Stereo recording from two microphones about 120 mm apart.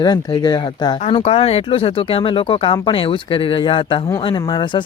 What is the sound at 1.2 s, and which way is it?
Speech, 55° left (ahead or behind).